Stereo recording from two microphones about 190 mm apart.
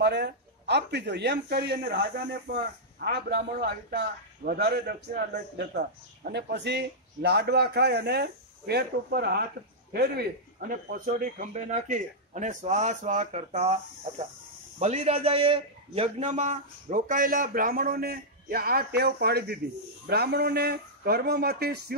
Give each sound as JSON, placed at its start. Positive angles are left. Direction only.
{"t": 0.0, "sound": "speech", "side_deg": -60}
{"t": 10.7, "sound": "a man's voice", "side_deg": -50}